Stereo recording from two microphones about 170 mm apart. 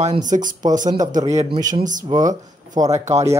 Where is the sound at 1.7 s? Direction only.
50° right (ahead or behind).